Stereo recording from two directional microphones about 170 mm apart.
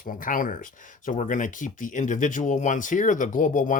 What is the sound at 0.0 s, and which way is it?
Speech, 55° left (ahead or behind).